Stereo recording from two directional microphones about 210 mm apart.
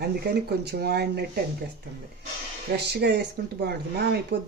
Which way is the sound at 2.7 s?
50° right (ahead or behind).